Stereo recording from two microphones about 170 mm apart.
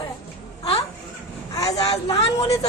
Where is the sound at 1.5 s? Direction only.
20° left (ahead or behind).